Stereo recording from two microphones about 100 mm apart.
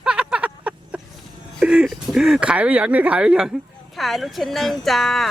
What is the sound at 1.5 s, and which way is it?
Speech, 5° right (ahead or behind).